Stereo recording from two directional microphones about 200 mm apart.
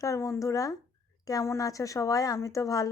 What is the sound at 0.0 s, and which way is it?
A woman's voice, 15° left (ahead or behind).